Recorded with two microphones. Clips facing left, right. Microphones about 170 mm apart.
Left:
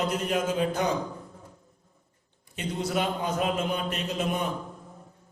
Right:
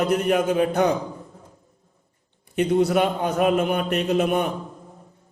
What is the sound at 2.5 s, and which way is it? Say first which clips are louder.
A man's voice: right 11 dB; 65° right (ahead or behind).